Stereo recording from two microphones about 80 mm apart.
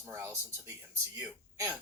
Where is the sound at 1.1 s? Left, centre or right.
Right.